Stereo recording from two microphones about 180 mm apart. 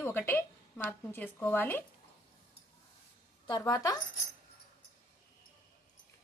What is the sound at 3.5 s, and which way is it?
Speech, 20° left (ahead or behind).